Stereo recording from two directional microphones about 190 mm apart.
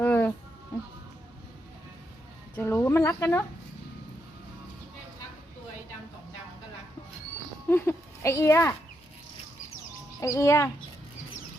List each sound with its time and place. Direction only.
0.0 s a sound: 10° left (ahead or behind)
2.6 s speech: 10° left (ahead or behind)
7.7 s speech: 10° left (ahead or behind)
10.2 s speech: 15° left (ahead or behind)